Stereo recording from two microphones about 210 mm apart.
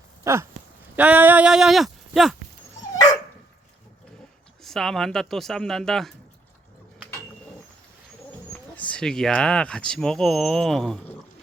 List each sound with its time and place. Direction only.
0.3 s speech: 15° right (ahead or behind)
4.6 s speech: centre (ahead or behind)
8.7 s speech: 5° left (ahead or behind)